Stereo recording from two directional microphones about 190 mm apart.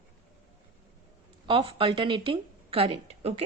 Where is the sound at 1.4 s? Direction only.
25° right (ahead or behind).